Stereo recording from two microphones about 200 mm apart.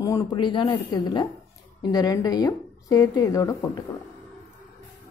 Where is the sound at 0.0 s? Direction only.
20° left (ahead or behind).